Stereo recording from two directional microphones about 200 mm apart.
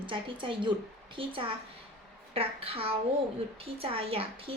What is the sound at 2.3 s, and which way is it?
A woman's voice, 30° right (ahead or behind).